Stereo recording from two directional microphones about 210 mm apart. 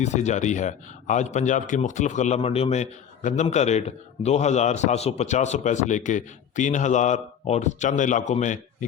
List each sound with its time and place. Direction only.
0.0 s a man's voice: 35° left (ahead or behind)